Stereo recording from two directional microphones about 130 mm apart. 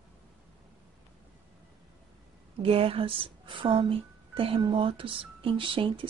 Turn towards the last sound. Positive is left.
turn(degrees=-40)  # may be behind; listen again after turning